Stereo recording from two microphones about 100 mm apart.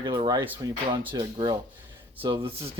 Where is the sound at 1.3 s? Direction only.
55° right (ahead or behind).